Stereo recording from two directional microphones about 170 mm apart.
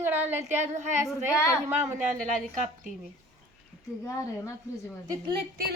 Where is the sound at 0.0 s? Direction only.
10° right (ahead or behind).